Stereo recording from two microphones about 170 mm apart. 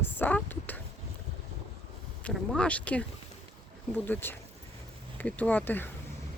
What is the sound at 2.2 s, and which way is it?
Speech, 5° left (ahead or behind).